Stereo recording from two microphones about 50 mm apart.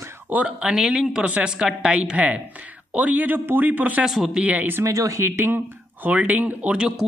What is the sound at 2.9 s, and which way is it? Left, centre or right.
A woman's voice, right.